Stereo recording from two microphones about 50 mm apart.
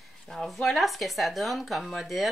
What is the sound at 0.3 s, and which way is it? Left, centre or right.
Speech, centre.